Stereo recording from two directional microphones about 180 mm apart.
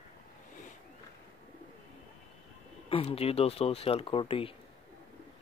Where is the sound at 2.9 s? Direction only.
35° left (ahead or behind).